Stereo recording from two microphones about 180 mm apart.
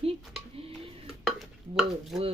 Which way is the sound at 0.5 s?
35° right (ahead or behind).